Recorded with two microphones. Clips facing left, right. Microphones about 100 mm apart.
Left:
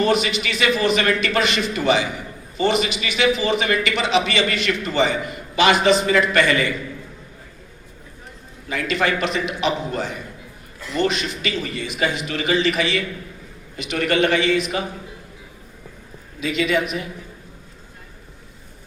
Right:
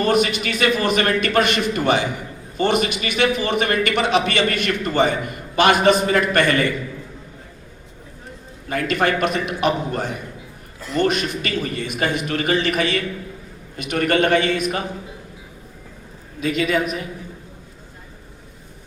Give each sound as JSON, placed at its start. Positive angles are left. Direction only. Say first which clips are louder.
{"t": 0.0, "sound": "a man's voice", "louder": "right 1 dB", "side_deg": -45}
{"t": 8.7, "sound": "a man's voice", "louder": "right 2 dB", "side_deg": -50}
{"t": 16.4, "sound": "a woman's voice", "louder": "right 1 dB", "side_deg": -45}